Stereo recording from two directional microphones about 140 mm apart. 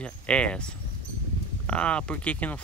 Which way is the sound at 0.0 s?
10° left (ahead or behind).